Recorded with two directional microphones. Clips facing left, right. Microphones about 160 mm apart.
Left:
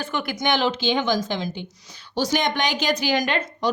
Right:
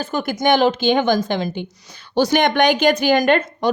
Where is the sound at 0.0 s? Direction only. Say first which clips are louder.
Right 6 dB; 40° right (ahead or behind).